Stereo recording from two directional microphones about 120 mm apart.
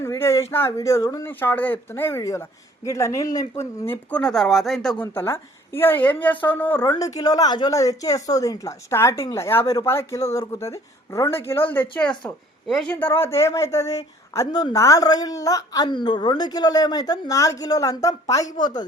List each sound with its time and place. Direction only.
0.0 s a sound: 25° left (ahead or behind)
0.5 s speech: 20° left (ahead or behind)
1.3 s speech: 15° left (ahead or behind)
5.1 s speech: 20° left (ahead or behind)
7.2 s speech: 35° left (ahead or behind); by 12.1 s 15° left (ahead or behind)
12.6 s speech: centre (ahead or behind)
12.9 s speech: 15° left (ahead or behind)